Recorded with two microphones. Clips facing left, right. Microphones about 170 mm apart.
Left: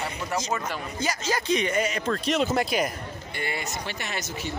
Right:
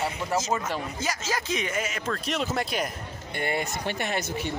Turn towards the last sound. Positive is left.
turn(degrees=-55)  # may be behind; listen again after turning